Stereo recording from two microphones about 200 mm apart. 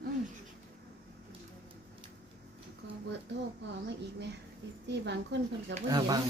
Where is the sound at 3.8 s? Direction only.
60° right (ahead or behind).